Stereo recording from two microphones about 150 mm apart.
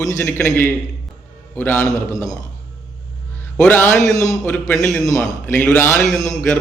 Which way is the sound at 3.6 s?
10° left (ahead or behind).